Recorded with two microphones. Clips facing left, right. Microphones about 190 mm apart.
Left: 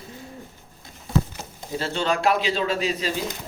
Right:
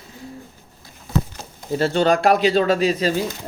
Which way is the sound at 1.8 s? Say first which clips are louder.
Right 7 dB; 55° right (ahead or behind).